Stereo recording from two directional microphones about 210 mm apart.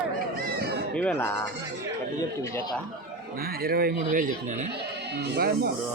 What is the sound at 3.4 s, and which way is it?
Speech, 45° right (ahead or behind).